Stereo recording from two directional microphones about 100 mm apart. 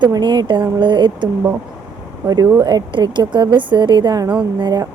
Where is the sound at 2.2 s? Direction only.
40° right (ahead or behind).